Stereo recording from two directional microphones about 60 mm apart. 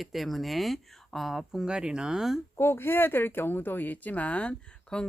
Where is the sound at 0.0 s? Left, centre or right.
Centre.